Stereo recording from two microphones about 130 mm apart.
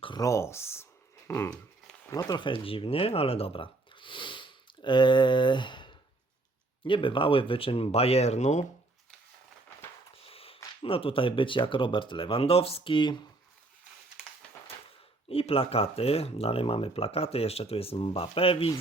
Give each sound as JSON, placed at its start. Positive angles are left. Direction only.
{"t": 0.0, "sound": "speech", "side_deg": 35}
{"t": 0.3, "sound": "speech", "side_deg": 20}
{"t": 10.2, "sound": "a sound", "side_deg": 45}
{"t": 10.8, "sound": "speech", "side_deg": 45}
{"t": 15.3, "sound": "speech", "side_deg": 45}